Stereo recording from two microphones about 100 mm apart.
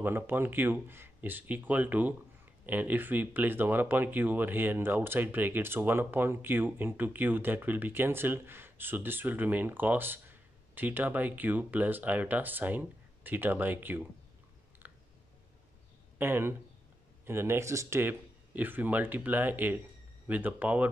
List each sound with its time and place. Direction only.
0.0 s speech: 20° right (ahead or behind)
14.8 s a sound: 15° right (ahead or behind)
16.2 s speech: 20° right (ahead or behind)